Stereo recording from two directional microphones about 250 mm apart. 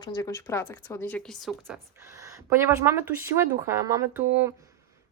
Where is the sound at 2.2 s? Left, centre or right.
Centre.